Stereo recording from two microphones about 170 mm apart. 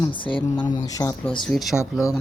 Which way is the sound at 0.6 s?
25° left (ahead or behind).